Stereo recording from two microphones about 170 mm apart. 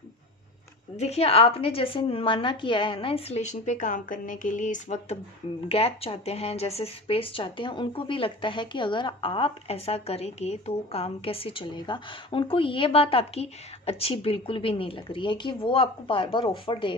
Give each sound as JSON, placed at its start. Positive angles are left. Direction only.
{"t": 0.9, "sound": "speech", "side_deg": 40}